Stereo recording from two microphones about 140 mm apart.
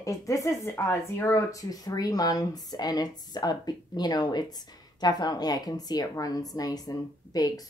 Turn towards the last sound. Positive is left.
turn(degrees=30)  # may be behind; listen again after turning